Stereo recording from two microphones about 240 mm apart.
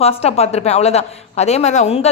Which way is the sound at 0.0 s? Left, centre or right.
Left.